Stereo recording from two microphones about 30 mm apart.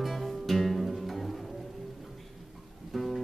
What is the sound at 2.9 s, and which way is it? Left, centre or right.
Music, centre.